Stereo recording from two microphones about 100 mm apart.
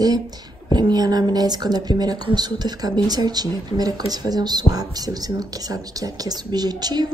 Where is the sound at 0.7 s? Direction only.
45° right (ahead or behind).